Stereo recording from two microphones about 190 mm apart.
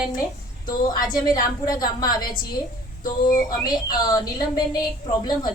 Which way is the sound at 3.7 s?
20° left (ahead or behind).